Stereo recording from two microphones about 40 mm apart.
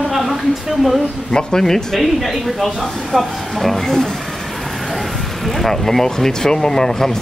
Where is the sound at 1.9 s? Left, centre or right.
Centre.